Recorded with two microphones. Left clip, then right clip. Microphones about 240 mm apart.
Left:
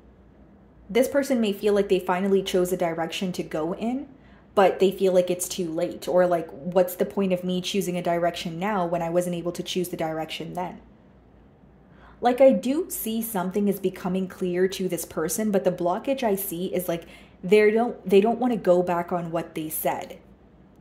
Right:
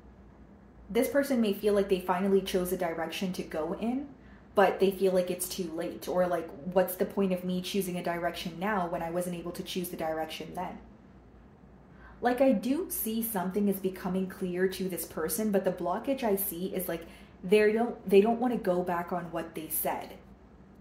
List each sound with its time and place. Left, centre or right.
0.9 s speech: left
12.2 s speech: left